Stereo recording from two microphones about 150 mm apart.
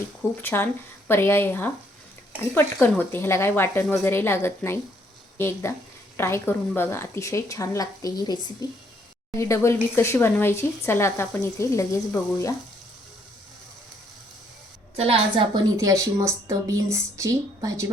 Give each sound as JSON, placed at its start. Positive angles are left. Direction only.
{"t": 0.4, "sound": "speech", "side_deg": 15}
{"t": 2.8, "sound": "a woman's voice", "side_deg": 15}
{"t": 14.9, "sound": "a woman's voice", "side_deg": -40}
{"t": 15.8, "sound": "a woman's voice", "side_deg": -20}